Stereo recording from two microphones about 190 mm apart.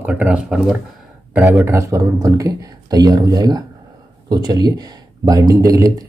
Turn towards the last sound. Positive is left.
turn(degrees=-20)  # may be behind; listen again after turning